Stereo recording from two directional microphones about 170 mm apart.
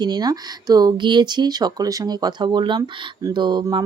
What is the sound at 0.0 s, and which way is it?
Speech, 25° right (ahead or behind).